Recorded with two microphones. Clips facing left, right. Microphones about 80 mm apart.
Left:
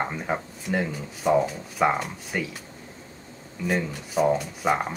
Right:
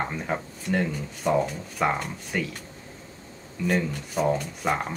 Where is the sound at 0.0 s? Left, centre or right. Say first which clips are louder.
Left 1 dB; centre.